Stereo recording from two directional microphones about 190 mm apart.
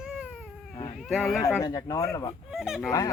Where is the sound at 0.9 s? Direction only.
Centre (ahead or behind).